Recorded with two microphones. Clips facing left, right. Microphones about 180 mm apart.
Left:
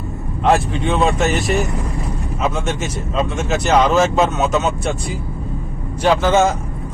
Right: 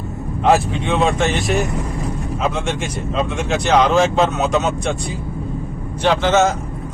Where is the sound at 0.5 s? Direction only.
Centre (ahead or behind).